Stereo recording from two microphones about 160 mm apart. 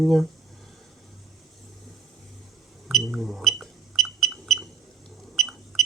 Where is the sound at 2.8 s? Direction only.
Centre (ahead or behind).